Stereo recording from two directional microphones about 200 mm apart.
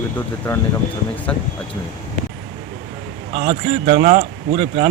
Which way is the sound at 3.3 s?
35° right (ahead or behind).